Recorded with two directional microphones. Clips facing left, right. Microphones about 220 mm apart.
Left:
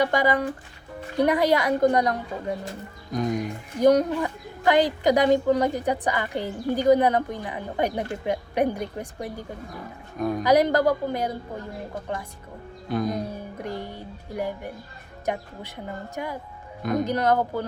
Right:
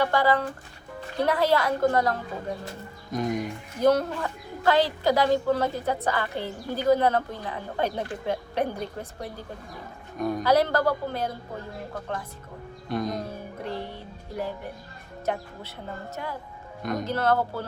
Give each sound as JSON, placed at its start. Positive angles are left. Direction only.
{"t": 0.0, "sound": "speech", "side_deg": 15}
{"t": 3.1, "sound": "speech", "side_deg": 0}
{"t": 3.8, "sound": "speech", "side_deg": 15}
{"t": 10.2, "sound": "speech", "side_deg": 0}
{"t": 10.4, "sound": "speech", "side_deg": 15}
{"t": 12.9, "sound": "speech", "side_deg": 0}
{"t": 13.6, "sound": "music", "side_deg": 15}
{"t": 15.3, "sound": "speech", "side_deg": 15}
{"t": 16.8, "sound": "speech", "side_deg": 0}
{"t": 17.1, "sound": "speech", "side_deg": 15}